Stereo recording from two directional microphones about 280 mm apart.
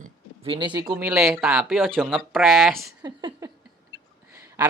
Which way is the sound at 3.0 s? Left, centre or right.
Centre.